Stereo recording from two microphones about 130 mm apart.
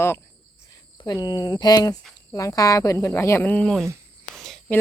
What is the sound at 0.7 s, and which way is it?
Speech, 30° left (ahead or behind).